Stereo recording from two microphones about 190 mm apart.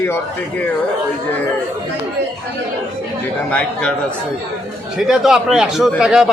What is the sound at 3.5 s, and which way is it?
Speech, 5° left (ahead or behind).